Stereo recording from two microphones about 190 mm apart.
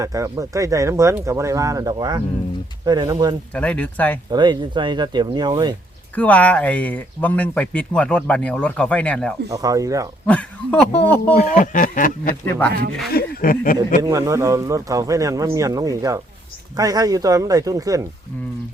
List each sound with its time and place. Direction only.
0.0 s speech: 15° right (ahead or behind)
3.5 s speech: 5° left (ahead or behind)
4.3 s speech: 20° right (ahead or behind)
6.1 s speech: 10° left (ahead or behind)
9.5 s speech: 20° right (ahead or behind)
10.2 s speech: 5° left (ahead or behind)
11.3 s speech: 45° left (ahead or behind)
12.5 s speech: 10° left (ahead or behind)
13.1 s speech: 50° left (ahead or behind)
14.0 s speech: 15° right (ahead or behind)